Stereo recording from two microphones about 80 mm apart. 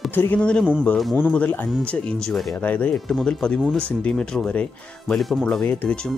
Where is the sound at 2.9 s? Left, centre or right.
Centre.